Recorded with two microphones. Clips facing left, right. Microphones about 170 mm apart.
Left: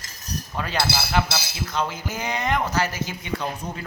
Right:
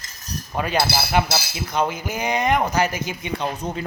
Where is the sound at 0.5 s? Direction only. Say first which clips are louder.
Right 4 dB; 20° right (ahead or behind).